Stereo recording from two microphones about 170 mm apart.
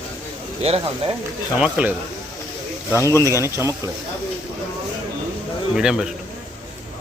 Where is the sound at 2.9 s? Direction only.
15° left (ahead or behind).